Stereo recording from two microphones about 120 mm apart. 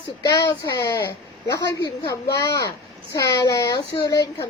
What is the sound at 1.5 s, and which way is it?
Speech, 35° left (ahead or behind).